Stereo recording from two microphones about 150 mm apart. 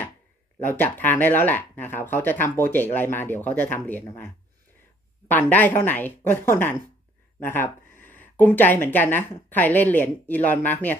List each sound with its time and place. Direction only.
0.6 s speech: 15° left (ahead or behind)
5.3 s speech: 10° left (ahead or behind)